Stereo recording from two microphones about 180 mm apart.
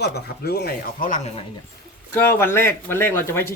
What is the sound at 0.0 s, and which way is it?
Speech, 65° left (ahead or behind).